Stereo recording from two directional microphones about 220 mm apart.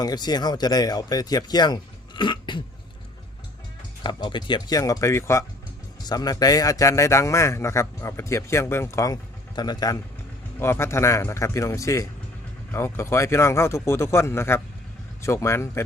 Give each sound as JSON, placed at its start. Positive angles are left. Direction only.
{"t": 0.0, "sound": "speech", "side_deg": 20}
{"t": 4.0, "sound": "a man's voice", "side_deg": 20}